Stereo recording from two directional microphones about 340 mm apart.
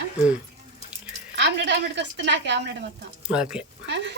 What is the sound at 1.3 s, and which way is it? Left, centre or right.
A woman's voice, right.